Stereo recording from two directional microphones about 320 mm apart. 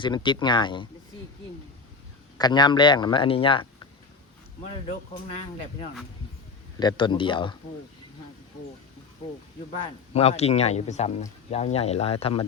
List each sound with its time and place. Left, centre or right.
0.0 s speech: centre
2.4 s speech: centre
4.7 s speech: centre
6.7 s speech: centre
9.7 s speech: centre